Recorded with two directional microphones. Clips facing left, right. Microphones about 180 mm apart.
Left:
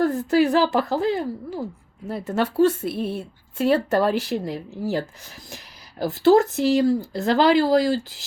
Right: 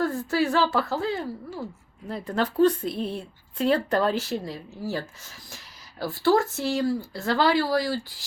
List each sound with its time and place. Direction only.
0.0 s a woman's voice: 15° left (ahead or behind)